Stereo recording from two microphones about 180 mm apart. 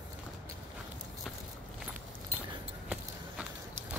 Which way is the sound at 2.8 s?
5° right (ahead or behind).